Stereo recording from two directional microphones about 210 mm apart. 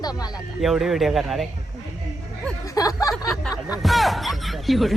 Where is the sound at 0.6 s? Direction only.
Centre (ahead or behind).